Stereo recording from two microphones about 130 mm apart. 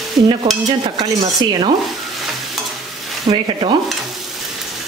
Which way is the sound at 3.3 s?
30° right (ahead or behind).